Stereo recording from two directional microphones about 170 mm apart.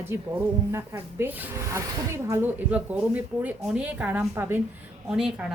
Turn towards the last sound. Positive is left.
turn(degrees=0)  # may be behind; listen again after turning